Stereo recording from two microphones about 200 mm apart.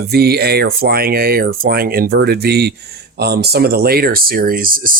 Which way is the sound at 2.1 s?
60° right (ahead or behind).